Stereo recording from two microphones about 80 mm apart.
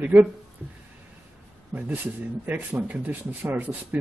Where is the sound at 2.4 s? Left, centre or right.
Centre.